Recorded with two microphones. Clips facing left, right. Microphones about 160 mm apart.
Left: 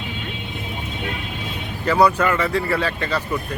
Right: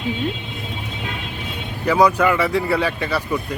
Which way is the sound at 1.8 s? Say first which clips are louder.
Right 1 dB; 10° right (ahead or behind).